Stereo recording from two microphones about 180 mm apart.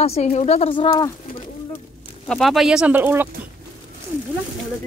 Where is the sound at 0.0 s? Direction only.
35° left (ahead or behind).